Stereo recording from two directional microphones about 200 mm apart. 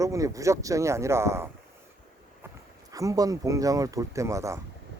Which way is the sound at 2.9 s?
15° right (ahead or behind).